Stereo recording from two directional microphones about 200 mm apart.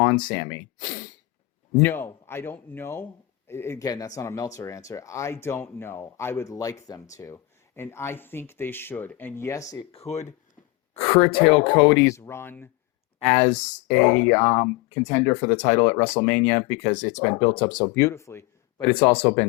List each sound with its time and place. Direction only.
0.0 s a man's voice: 20° left (ahead or behind)
9.9 s speech: 30° left (ahead or behind); by 12.6 s 10° left (ahead or behind)
13.5 s speech: 40° left (ahead or behind)
13.9 s a man's voice: 10° left (ahead or behind)
15.4 s a man's voice: 35° left (ahead or behind); by 19.5 s 15° left (ahead or behind)